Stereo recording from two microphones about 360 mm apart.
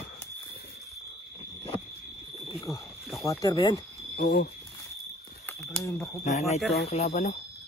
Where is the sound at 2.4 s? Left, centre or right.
Centre.